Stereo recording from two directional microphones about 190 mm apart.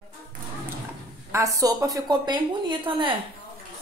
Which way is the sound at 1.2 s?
15° right (ahead or behind).